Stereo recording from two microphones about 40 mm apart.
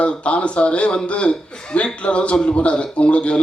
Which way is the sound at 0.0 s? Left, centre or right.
Left.